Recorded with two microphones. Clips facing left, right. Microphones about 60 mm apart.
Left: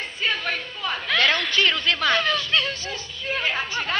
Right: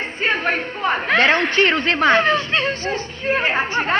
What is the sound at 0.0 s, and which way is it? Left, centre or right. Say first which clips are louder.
A woman's voice: right 6 dB; right.